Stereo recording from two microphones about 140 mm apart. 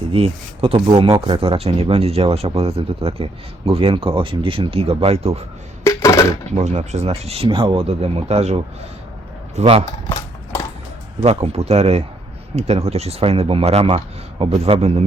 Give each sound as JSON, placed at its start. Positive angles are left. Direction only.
{"t": 0.1, "sound": "speech", "side_deg": -45}
{"t": 5.8, "sound": "coin", "side_deg": 20}
{"t": 6.5, "sound": "speech", "side_deg": -55}
{"t": 9.6, "sound": "speech", "side_deg": -45}
{"t": 11.2, "sound": "speech", "side_deg": -45}